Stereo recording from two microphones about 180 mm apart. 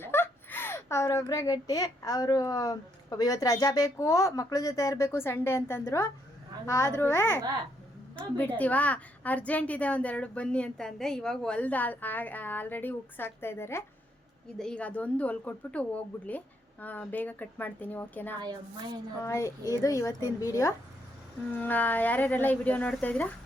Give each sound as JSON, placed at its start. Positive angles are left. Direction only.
{"t": 0.0, "sound": "speech", "side_deg": 10}